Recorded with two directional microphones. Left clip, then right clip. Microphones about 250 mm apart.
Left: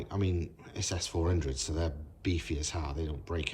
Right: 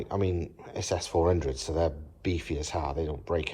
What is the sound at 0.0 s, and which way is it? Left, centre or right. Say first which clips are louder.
Speech: right 6 dB; centre.